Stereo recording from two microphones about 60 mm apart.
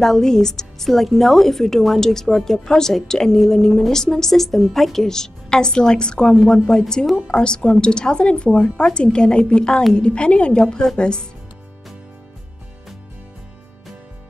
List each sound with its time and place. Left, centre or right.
0.0 s speech: centre